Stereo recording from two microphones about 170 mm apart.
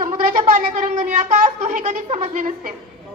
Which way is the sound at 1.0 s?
50° right (ahead or behind).